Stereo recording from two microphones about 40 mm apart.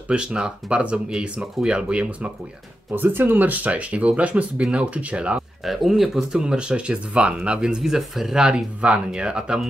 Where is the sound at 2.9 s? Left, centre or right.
Right.